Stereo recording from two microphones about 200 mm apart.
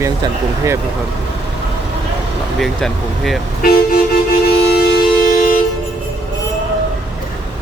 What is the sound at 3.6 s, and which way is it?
Vehicle, 50° left (ahead or behind).